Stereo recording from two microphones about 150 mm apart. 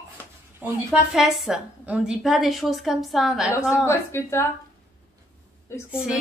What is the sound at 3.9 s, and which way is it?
Speech, 15° left (ahead or behind).